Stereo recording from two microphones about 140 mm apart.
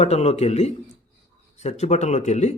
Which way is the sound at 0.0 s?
50° left (ahead or behind).